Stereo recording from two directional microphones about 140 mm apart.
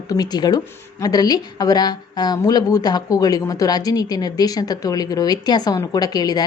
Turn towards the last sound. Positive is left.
turn(degrees=30)  # may be behind; listen again after turning